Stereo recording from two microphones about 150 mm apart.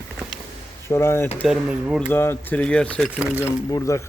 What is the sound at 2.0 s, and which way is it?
Speech, 15° left (ahead or behind).